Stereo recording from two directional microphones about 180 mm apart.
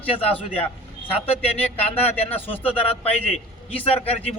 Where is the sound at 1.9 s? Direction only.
35° left (ahead or behind).